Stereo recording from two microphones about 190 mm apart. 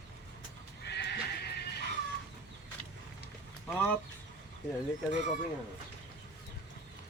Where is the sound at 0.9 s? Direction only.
60° left (ahead or behind).